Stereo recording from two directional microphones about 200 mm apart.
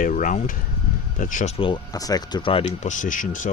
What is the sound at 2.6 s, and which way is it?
Speech, 40° left (ahead or behind).